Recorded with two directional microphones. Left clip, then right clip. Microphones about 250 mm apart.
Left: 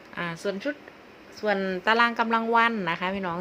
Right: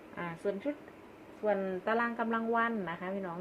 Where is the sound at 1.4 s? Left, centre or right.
Left.